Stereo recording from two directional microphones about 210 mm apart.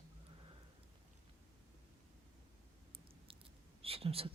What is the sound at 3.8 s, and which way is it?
Speech, 25° right (ahead or behind).